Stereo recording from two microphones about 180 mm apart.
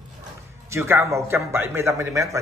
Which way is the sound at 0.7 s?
15° right (ahead or behind).